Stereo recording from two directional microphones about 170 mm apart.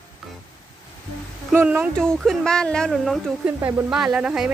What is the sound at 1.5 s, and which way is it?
Speech, 10° right (ahead or behind).